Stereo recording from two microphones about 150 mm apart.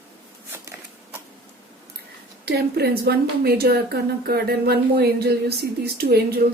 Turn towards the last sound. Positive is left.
turn(degrees=-90)